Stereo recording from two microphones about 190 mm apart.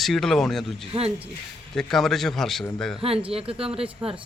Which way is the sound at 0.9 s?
30° right (ahead or behind).